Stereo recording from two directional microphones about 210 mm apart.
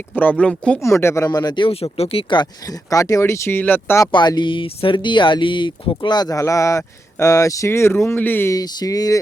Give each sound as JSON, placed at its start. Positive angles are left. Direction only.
{"t": 0.2, "sound": "speech", "side_deg": 5}